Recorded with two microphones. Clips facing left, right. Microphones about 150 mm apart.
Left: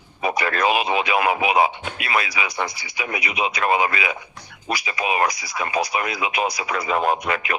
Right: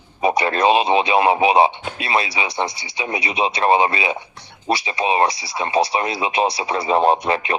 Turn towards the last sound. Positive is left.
turn(degrees=-30)  # may be behind; listen again after turning